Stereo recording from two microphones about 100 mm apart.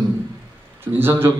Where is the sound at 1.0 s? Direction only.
25° right (ahead or behind).